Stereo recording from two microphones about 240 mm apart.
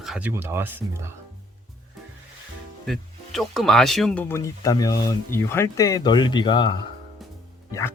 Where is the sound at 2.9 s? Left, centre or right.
Centre.